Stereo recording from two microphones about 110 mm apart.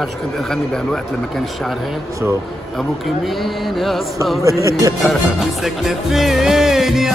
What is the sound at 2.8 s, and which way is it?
Music, centre (ahead or behind).